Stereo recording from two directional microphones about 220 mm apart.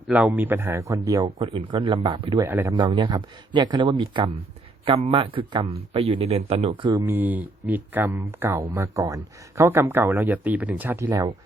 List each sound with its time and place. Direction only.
0.1 s speech: 5° right (ahead or behind); by 2.4 s 20° right (ahead or behind)
2.4 s speech: 10° right (ahead or behind)
7.0 s speech: 10° right (ahead or behind)